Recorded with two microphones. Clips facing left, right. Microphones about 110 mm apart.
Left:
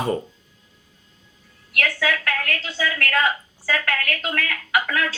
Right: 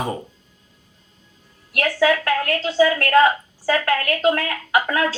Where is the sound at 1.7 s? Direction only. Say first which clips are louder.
Right 6 dB; 30° right (ahead or behind).